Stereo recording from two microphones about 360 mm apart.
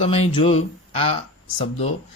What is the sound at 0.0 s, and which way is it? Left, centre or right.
Speech, centre.